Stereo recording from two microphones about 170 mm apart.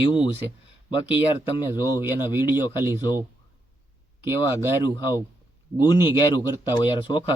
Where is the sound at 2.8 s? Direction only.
15° right (ahead or behind).